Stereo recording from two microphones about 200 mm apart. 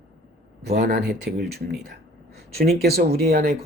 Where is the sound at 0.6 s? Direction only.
55° right (ahead or behind).